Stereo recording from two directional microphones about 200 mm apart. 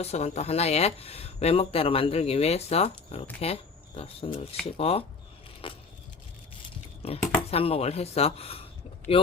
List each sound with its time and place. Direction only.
0.0 s speech: 30° left (ahead or behind)
5.6 s vehicle: 25° left (ahead or behind)
7.0 s speech: 30° left (ahead or behind)